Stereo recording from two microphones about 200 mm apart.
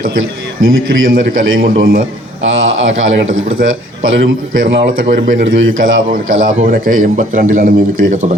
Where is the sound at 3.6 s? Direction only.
45° right (ahead or behind).